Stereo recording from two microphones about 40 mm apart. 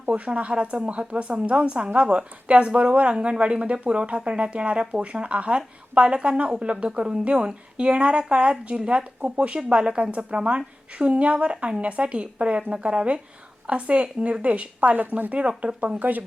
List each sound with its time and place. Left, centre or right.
0.0 s a woman's voice: right
15.3 s a woman's voice: right